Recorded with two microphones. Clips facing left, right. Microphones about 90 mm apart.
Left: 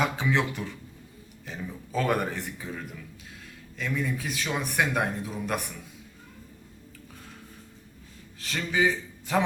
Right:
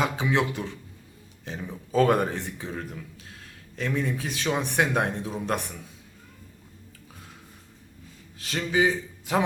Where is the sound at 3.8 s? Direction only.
30° right (ahead or behind).